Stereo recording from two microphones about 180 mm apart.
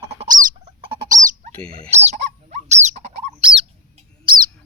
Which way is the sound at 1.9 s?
40° right (ahead or behind).